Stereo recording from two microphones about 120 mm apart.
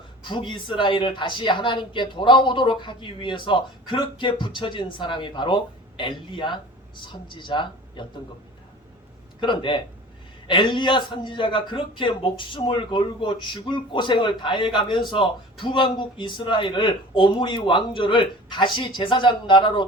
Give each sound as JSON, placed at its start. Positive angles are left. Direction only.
{"t": 0.2, "sound": "speech", "side_deg": 40}
{"t": 9.4, "sound": "a man's voice", "side_deg": 40}